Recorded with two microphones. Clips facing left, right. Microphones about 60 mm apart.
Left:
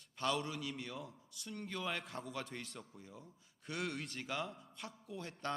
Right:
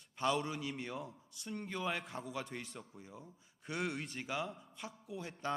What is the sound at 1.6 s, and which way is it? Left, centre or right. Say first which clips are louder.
A man's voice: right 2 dB; centre.